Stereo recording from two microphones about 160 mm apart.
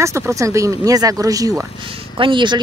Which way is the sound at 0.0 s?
20° right (ahead or behind).